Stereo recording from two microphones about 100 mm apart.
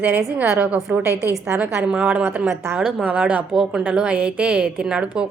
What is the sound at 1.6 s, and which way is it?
Speech, 10° right (ahead or behind).